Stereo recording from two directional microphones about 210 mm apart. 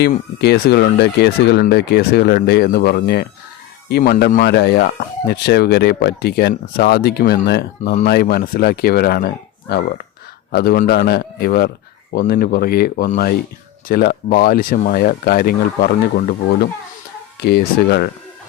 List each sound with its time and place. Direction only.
0.0 s speech: 50° left (ahead or behind)